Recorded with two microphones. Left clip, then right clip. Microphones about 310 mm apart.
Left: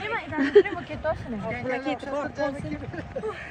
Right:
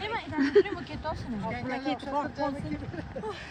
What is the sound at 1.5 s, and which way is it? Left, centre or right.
Speech, right.